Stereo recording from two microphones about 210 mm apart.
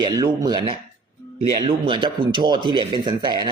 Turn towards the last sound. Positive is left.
turn(degrees=-20)  # may be behind; listen again after turning